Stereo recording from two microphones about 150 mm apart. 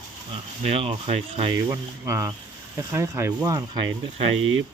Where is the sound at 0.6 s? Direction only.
40° right (ahead or behind).